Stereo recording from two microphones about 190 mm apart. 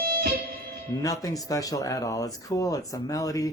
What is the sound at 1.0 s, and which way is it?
Speech, 20° left (ahead or behind).